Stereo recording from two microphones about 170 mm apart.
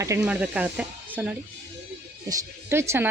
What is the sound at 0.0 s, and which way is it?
A woman's voice, 15° right (ahead or behind).